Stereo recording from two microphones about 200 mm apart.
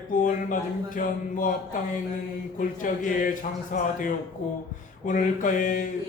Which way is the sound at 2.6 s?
40° left (ahead or behind).